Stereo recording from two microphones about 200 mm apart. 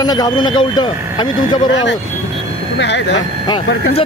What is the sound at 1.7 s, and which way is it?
Speech, 65° left (ahead or behind).